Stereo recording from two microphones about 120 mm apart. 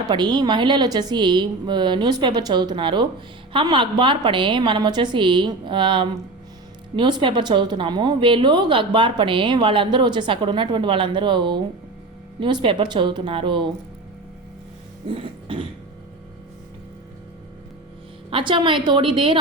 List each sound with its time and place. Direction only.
0.1 s a woman's voice: 40° right (ahead or behind)
15.1 s a sound: 50° right (ahead or behind)
18.3 s speech: 45° right (ahead or behind)